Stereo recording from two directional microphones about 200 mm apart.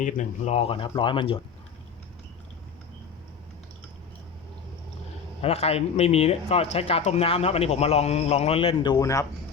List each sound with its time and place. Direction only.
0.0 s speech: 35° left (ahead or behind)
5.4 s speech: 30° left (ahead or behind)